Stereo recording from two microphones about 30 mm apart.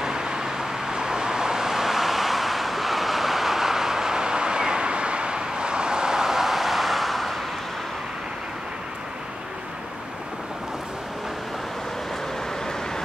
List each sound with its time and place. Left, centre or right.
0.0 s vehicle: right; by 7.3 s centre